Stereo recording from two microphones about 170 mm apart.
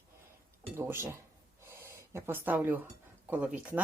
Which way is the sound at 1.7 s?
15° right (ahead or behind).